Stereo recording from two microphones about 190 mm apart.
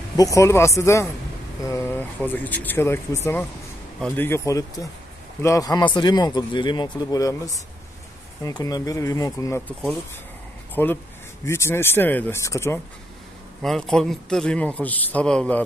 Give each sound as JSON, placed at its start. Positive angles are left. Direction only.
{"t": 0.2, "sound": "speech", "side_deg": 15}
{"t": 10.7, "sound": "speech", "side_deg": 10}
{"t": 13.6, "sound": "a man's voice", "side_deg": 0}